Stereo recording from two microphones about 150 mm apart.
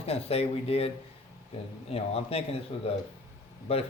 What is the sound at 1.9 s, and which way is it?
Speech, 40° left (ahead or behind).